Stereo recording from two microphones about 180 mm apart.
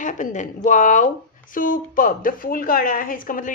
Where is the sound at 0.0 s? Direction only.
45° left (ahead or behind).